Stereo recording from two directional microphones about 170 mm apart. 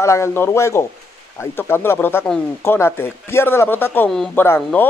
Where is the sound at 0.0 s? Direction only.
15° left (ahead or behind).